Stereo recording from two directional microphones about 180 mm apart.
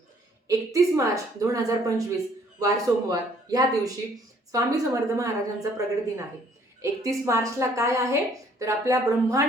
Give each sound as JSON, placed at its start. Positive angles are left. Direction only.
{"t": 0.4, "sound": "a woman's voice", "side_deg": -20}
{"t": 7.3, "sound": "a woman's voice", "side_deg": -15}